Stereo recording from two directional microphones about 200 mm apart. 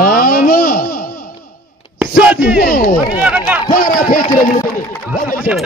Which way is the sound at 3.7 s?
45° left (ahead or behind).